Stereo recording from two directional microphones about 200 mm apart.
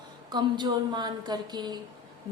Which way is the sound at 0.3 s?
20° right (ahead or behind).